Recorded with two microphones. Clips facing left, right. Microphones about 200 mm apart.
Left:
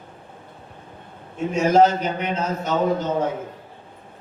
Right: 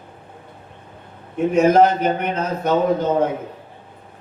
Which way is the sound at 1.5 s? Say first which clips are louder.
Right 2 dB; 60° right (ahead or behind).